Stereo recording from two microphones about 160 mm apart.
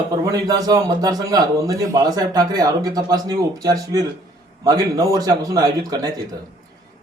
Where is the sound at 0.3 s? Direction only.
25° right (ahead or behind).